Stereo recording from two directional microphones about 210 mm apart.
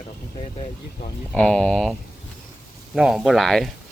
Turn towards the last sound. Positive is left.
turn(degrees=0)  # may be behind; listen again after turning